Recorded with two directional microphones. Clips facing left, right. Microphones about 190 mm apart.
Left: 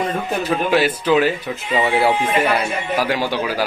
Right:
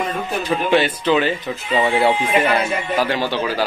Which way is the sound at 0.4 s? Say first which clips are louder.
Even; 5° left (ahead or behind).